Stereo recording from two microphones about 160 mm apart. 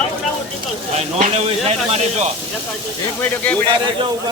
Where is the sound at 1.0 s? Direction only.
45° right (ahead or behind).